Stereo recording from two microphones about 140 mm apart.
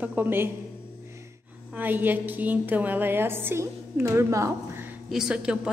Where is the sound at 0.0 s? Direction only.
15° right (ahead or behind).